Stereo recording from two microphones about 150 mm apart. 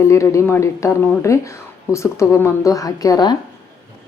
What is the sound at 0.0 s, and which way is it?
Speech, 20° left (ahead or behind).